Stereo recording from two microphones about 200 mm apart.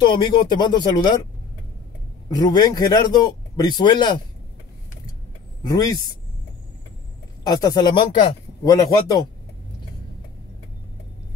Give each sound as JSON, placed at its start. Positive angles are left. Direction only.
{"t": 0.0, "sound": "a man's voice", "side_deg": 25}
{"t": 2.2, "sound": "a man's voice", "side_deg": 20}
{"t": 5.6, "sound": "speech", "side_deg": 15}
{"t": 7.4, "sound": "a man's voice", "side_deg": 20}